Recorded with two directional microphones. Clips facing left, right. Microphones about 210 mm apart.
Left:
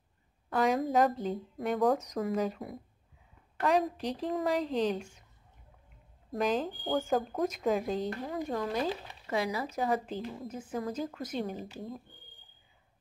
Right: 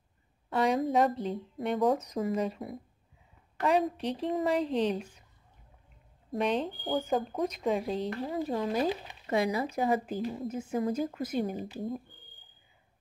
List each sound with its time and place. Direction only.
0.5 s speech: centre (ahead or behind)
6.3 s speech: centre (ahead or behind)
8.5 s speech: 10° right (ahead or behind)
9.7 s speech: 10° right (ahead or behind)